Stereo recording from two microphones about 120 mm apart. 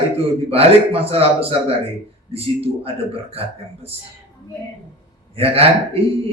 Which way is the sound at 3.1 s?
55° right (ahead or behind).